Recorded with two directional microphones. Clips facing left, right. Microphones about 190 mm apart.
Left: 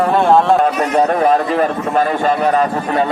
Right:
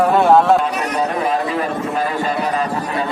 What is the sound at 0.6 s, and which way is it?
A man's voice, 45° left (ahead or behind).